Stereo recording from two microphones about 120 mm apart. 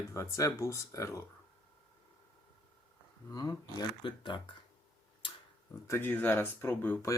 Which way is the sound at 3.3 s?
30° left (ahead or behind).